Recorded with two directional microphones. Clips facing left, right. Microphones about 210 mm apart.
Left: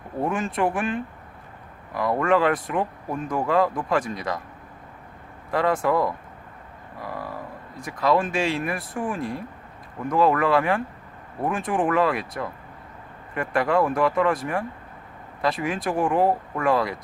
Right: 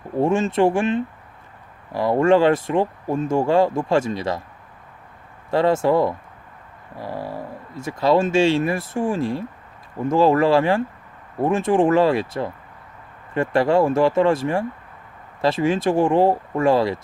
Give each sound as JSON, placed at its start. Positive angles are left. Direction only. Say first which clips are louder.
{"t": 0.2, "sound": "speech", "louder": "right 7 dB", "side_deg": -25}
{"t": 5.5, "sound": "speech", "louder": "right 5 dB", "side_deg": -25}